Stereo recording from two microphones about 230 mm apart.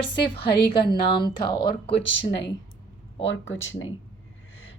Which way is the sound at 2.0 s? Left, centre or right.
Left.